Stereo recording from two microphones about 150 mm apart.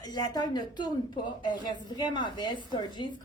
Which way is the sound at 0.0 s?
25° left (ahead or behind).